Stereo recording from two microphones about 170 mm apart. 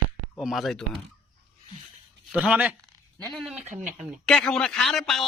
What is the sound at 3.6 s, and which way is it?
Speech, 45° right (ahead or behind).